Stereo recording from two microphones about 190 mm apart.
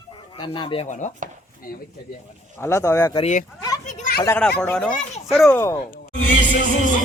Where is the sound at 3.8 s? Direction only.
40° left (ahead or behind).